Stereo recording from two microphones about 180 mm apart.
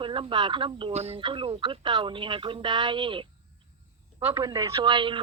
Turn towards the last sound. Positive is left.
turn(degrees=-25)  # may be behind; listen again after turning